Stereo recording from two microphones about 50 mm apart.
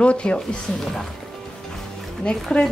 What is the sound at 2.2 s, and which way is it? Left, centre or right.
Speech, centre.